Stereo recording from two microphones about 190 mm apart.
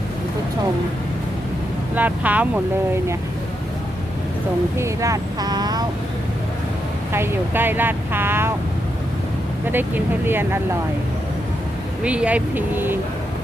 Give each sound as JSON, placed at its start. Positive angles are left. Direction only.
{"t": 2.0, "sound": "speech", "side_deg": -10}
{"t": 4.8, "sound": "speech", "side_deg": -15}
{"t": 7.1, "sound": "speech", "side_deg": -10}
{"t": 9.7, "sound": "speech", "side_deg": -10}
{"t": 12.0, "sound": "speech", "side_deg": -5}